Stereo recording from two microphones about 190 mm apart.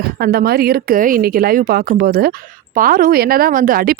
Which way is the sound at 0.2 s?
55° right (ahead or behind).